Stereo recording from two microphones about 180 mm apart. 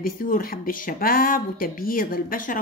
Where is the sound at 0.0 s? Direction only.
55° left (ahead or behind).